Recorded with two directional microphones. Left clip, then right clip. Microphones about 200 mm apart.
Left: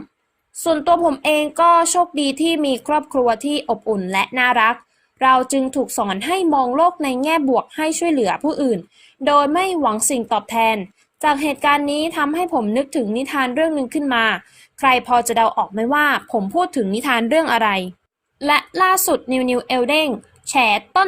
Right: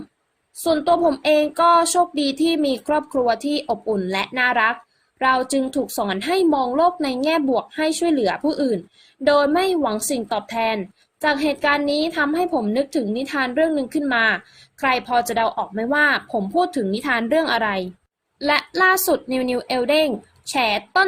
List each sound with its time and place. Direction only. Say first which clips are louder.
0.6 s speech: left 2 dB; 20° left (ahead or behind)